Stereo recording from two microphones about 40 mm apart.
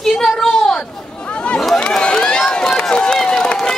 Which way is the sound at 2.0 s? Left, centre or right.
Left.